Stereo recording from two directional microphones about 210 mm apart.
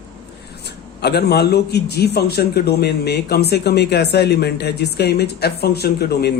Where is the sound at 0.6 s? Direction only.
50° left (ahead or behind).